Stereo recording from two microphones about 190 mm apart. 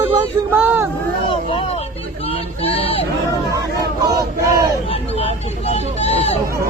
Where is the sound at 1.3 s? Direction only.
30° left (ahead or behind).